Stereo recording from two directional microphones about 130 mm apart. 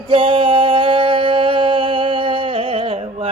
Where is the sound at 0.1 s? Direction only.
45° right (ahead or behind).